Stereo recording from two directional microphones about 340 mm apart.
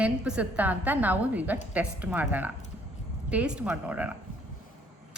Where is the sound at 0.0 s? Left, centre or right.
Centre.